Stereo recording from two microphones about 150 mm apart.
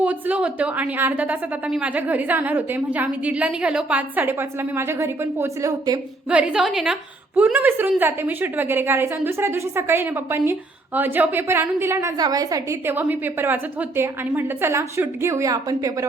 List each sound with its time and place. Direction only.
0.0 s a woman's voice: 10° right (ahead or behind)
6.3 s a woman's voice: 5° right (ahead or behind); by 16.0 s 25° right (ahead or behind)